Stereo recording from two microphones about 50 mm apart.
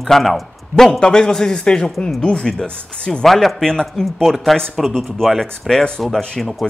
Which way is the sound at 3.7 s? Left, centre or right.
Centre.